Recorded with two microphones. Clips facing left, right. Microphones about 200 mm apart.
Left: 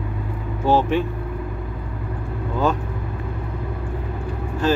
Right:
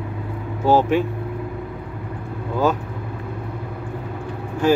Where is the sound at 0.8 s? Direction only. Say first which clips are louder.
Right 2 dB; 5° right (ahead or behind).